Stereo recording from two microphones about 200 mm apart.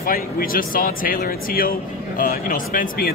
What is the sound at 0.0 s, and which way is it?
Speech, 45° left (ahead or behind).